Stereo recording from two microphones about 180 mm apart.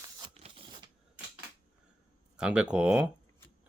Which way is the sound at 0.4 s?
30° right (ahead or behind).